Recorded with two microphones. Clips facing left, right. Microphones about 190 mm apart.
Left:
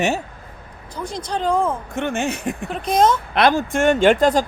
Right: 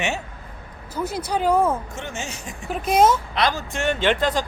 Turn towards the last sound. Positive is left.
turn(degrees=45)  # may be behind; listen again after turning